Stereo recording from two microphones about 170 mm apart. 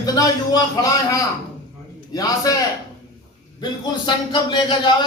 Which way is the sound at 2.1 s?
20° left (ahead or behind).